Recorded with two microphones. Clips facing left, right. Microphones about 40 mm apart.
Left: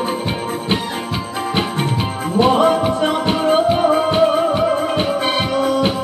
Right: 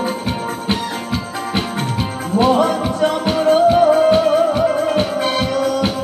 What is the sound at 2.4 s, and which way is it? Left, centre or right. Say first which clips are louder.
Music: left 1 dB; left.